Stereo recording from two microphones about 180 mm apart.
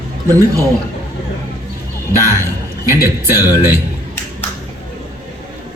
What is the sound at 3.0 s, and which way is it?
Speech, 15° right (ahead or behind).